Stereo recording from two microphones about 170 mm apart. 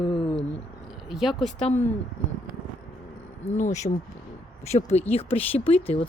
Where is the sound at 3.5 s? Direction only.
45° left (ahead or behind).